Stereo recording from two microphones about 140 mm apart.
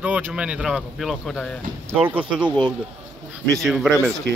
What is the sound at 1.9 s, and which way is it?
Speech, 15° right (ahead or behind).